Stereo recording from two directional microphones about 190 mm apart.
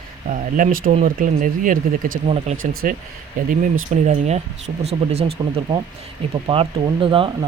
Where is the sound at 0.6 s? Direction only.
45° right (ahead or behind).